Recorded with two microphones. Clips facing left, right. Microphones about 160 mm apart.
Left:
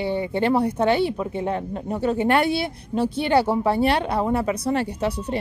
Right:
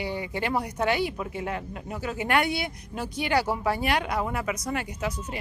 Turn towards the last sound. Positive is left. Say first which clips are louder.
# left 7 dB
turn(degrees=30)  # may be behind; listen again after turning